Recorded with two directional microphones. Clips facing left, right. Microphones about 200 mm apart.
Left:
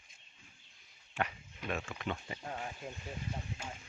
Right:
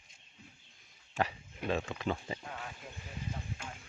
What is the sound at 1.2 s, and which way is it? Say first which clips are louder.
Speech: right 3 dB; 30° right (ahead or behind).